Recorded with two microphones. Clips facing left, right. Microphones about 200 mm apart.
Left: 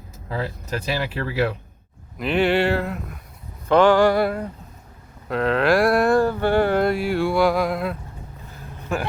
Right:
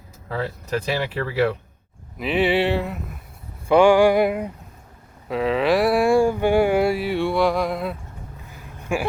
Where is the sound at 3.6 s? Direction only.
10° right (ahead or behind).